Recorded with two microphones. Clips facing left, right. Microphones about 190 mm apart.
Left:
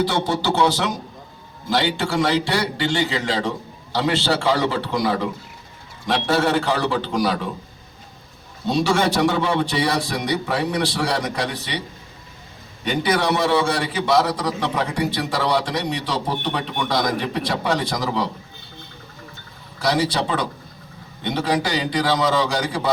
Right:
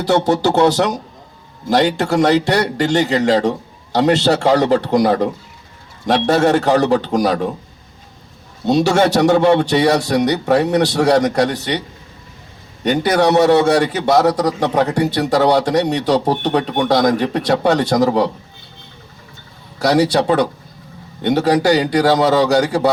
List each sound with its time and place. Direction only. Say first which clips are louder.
0.1 s a man's voice: right 7 dB; 45° right (ahead or behind)
8.6 s a man's voice: right 6 dB; 45° right (ahead or behind)
12.8 s a man's voice: right 7 dB; 40° right (ahead or behind)
19.8 s a man's voice: right 7 dB; 45° right (ahead or behind)